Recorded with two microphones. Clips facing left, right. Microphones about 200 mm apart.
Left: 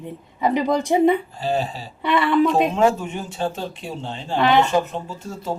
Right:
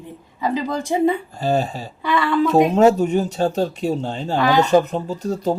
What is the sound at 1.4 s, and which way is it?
Speech, 45° right (ahead or behind).